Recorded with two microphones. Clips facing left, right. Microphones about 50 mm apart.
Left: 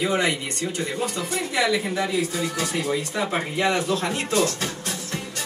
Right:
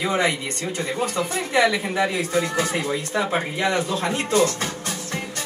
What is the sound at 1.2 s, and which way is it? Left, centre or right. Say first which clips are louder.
Speech: right 5 dB; centre.